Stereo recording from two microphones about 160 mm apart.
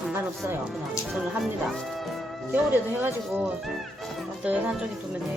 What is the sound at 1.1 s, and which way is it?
Speech, centre (ahead or behind).